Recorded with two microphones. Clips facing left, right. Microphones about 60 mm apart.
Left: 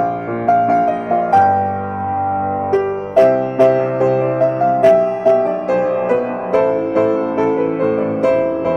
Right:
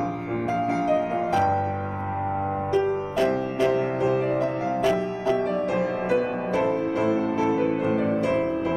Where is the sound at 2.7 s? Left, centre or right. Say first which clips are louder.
Left 5 dB; left.